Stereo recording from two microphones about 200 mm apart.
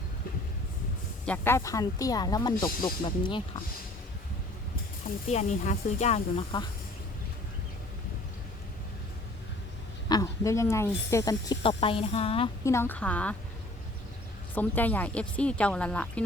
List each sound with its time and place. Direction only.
1.2 s speech: 10° left (ahead or behind); by 3.6 s 25° left (ahead or behind)
5.3 s speech: 35° left (ahead or behind)
10.1 s speech: 15° left (ahead or behind)
12.6 s speech: 10° left (ahead or behind)
14.5 s speech: 10° left (ahead or behind)